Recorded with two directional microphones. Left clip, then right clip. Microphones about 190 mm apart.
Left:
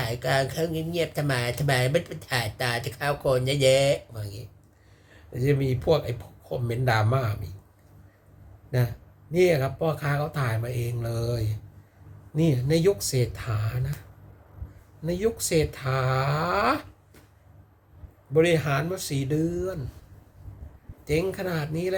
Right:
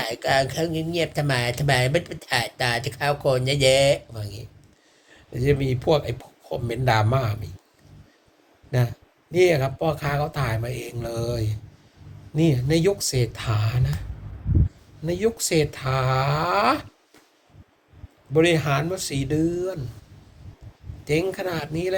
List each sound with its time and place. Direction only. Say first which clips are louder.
0.0 s speech: right 4 dB; 15° left (ahead or behind)
8.7 s speech: right 3 dB; 15° left (ahead or behind)
15.0 s speech: right 3 dB; 15° left (ahead or behind)
18.3 s speech: right 2 dB; 15° left (ahead or behind)
21.0 s speech: right 3 dB; 15° left (ahead or behind)